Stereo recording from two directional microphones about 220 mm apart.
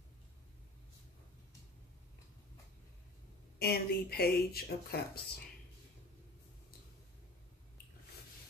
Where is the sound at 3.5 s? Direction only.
45° left (ahead or behind).